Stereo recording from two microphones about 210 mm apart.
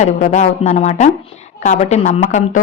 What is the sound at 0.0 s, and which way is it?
Speech, 35° left (ahead or behind).